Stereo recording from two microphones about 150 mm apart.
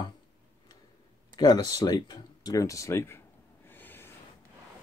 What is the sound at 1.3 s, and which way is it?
Speech, 25° left (ahead or behind).